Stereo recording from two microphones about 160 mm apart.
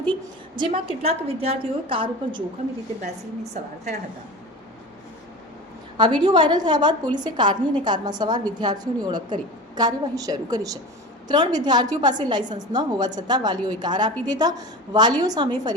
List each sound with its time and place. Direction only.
0.5 s a woman's voice: 30° right (ahead or behind)
6.0 s a woman's voice: 25° right (ahead or behind)